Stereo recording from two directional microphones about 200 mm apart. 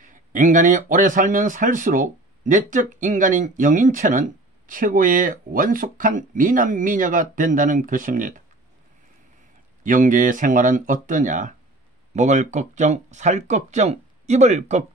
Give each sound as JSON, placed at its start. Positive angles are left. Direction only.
{"t": 0.0, "sound": "speech", "side_deg": -40}
{"t": 9.8, "sound": "speech", "side_deg": -40}